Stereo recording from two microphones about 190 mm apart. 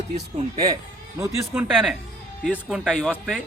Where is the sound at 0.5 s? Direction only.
20° right (ahead or behind).